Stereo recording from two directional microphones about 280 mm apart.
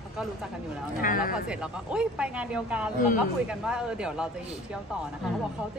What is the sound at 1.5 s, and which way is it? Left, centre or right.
A man's voice, centre.